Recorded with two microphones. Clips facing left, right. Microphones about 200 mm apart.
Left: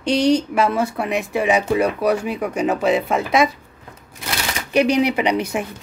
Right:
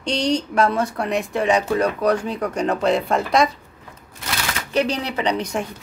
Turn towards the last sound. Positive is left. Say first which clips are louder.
# left 2 dB
turn(degrees=10)  # may be behind; listen again after turning